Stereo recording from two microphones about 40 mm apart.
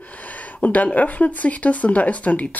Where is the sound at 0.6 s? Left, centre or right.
Left.